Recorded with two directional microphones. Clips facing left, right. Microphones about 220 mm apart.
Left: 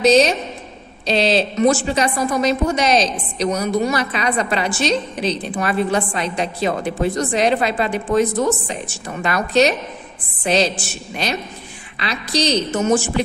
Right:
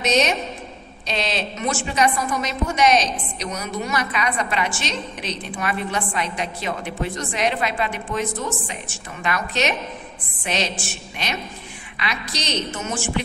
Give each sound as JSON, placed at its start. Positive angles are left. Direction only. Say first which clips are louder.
{"t": 0.0, "sound": "a woman's voice", "louder": "left 7 dB", "side_deg": 35}
{"t": 12.0, "sound": "a woman's voice", "louder": "left 8 dB", "side_deg": 35}